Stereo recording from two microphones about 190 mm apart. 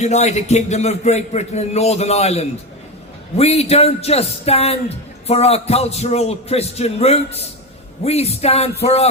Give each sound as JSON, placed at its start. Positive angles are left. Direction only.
{"t": 0.0, "sound": "a man's voice", "side_deg": 35}